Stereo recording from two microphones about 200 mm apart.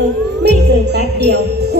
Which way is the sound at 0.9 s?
55° right (ahead or behind).